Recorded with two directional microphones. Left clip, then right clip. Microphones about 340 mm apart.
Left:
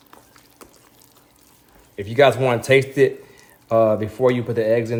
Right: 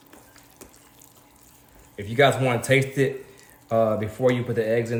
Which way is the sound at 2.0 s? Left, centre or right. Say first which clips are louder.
Left 4 dB; centre.